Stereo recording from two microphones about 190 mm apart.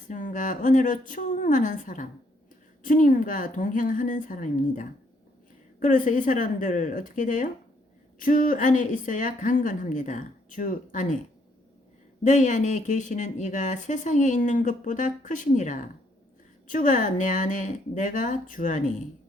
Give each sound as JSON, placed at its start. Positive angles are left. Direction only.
{"t": 0.1, "sound": "a woman's voice", "side_deg": 45}
{"t": 12.2, "sound": "a woman's voice", "side_deg": 40}